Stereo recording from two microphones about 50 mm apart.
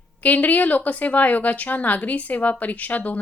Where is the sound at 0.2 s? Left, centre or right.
Left.